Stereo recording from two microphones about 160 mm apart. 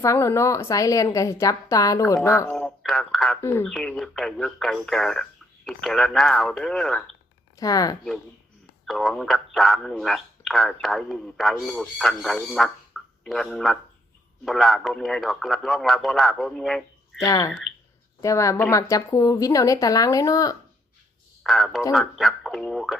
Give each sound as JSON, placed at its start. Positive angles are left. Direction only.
{"t": 0.0, "sound": "a woman's voice", "side_deg": 20}
{"t": 2.6, "sound": "speech", "side_deg": 0}
{"t": 7.6, "sound": "a woman's voice", "side_deg": 25}
{"t": 8.9, "sound": "speech", "side_deg": 0}
{"t": 17.2, "sound": "a woman's voice", "side_deg": 20}
{"t": 21.4, "sound": "speech", "side_deg": 0}